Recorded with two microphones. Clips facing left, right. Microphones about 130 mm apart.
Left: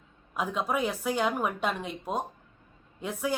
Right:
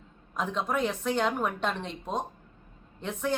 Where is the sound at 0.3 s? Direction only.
10° left (ahead or behind).